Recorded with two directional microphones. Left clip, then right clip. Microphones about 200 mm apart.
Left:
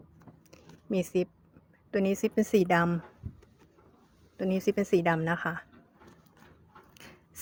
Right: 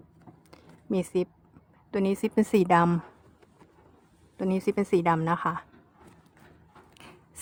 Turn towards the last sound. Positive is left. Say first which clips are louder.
# right 1 dB
turn(degrees=-10)  # may be behind; listen again after turning